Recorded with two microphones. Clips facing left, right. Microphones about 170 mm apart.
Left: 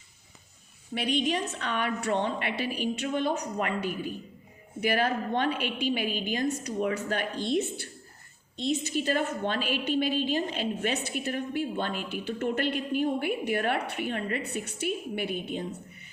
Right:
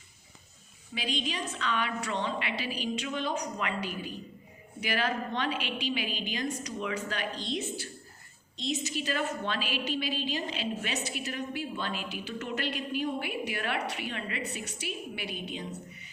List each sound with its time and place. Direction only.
0.9 s a woman's voice: 60° left (ahead or behind)